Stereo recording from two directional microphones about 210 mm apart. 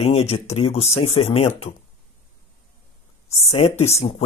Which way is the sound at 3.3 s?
30° left (ahead or behind).